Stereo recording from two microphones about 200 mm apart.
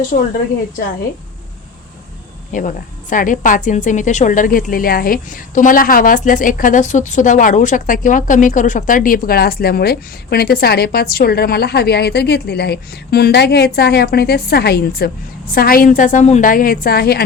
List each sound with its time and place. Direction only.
0.1 s a woman's voice: 45° left (ahead or behind)
2.5 s a woman's voice: 40° left (ahead or behind)